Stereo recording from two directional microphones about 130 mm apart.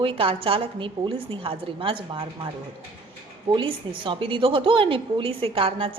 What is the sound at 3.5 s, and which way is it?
A woman's voice, 40° right (ahead or behind).